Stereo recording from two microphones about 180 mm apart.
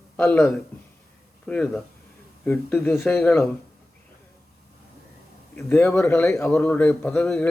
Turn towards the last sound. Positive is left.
turn(degrees=10)  # may be behind; listen again after turning